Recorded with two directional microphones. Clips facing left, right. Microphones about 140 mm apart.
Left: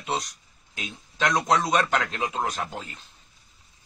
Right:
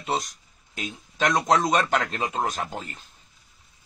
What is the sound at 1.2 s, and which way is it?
A man's voice, centre (ahead or behind).